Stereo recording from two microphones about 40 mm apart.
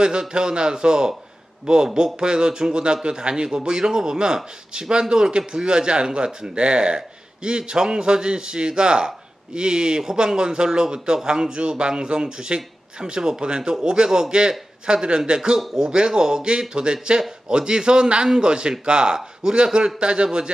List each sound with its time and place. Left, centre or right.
0.0 s a man's voice: centre